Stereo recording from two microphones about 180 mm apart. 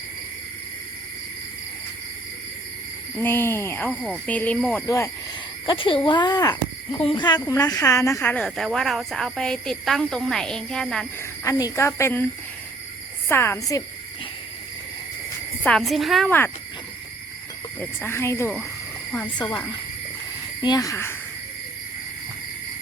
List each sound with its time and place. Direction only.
3.2 s speech: 15° left (ahead or behind)
5.6 s speech: 30° left (ahead or behind); by 11.0 s 5° left (ahead or behind)
11.2 s speech: 20° left (ahead or behind)
15.6 s speech: centre (ahead or behind)
17.7 s speech: 10° left (ahead or behind)